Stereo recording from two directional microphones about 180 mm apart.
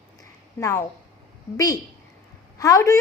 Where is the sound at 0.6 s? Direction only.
15° left (ahead or behind).